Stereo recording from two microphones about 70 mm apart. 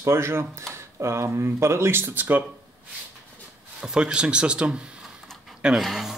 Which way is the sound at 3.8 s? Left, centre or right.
Centre.